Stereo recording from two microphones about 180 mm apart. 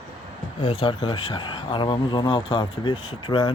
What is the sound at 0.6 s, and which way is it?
Speech, 30° left (ahead or behind).